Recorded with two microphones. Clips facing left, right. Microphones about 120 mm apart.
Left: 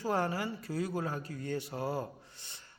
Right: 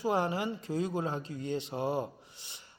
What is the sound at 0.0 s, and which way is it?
Speech, 15° right (ahead or behind).